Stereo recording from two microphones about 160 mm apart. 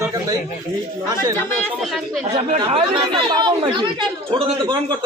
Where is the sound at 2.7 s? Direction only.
30° right (ahead or behind).